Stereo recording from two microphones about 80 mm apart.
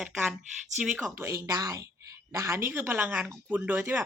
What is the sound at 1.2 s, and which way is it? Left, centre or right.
Speech, right.